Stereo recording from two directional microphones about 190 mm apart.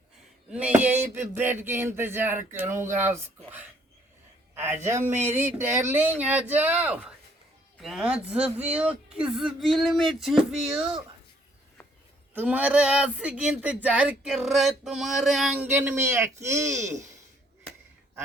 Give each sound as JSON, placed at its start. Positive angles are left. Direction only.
{"t": 0.5, "sound": "speech", "side_deg": -5}
{"t": 12.3, "sound": "speech", "side_deg": -10}
{"t": 16.8, "sound": "speech", "side_deg": -40}